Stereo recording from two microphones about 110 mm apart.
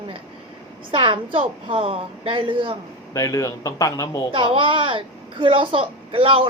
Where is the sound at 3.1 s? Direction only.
30° left (ahead or behind).